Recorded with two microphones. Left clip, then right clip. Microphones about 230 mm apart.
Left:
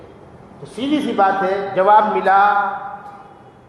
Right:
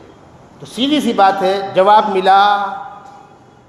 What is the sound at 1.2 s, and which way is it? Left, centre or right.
A man's voice, right.